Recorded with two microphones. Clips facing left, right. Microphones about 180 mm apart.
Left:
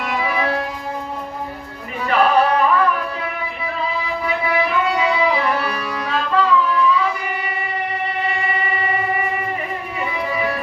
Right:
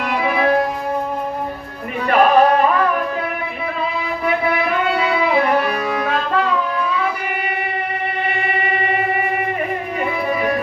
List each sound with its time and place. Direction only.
2.0 s singing: 45° right (ahead or behind)
4.9 s music: 60° right (ahead or behind)